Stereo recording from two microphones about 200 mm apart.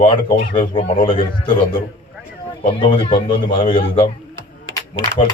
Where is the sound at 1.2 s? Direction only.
45° left (ahead or behind).